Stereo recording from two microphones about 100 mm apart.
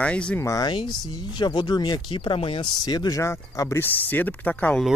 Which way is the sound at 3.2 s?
30° left (ahead or behind).